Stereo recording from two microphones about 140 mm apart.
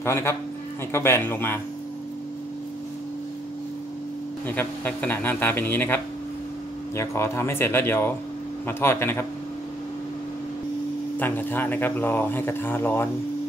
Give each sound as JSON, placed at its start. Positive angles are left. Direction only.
{"t": 0.0, "sound": "a man's voice", "side_deg": 20}
{"t": 4.5, "sound": "speech", "side_deg": 15}
{"t": 7.0, "sound": "speech", "side_deg": 20}
{"t": 11.1, "sound": "speech", "side_deg": 15}